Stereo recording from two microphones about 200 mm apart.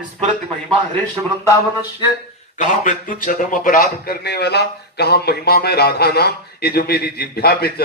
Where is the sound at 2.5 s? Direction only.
40° left (ahead or behind).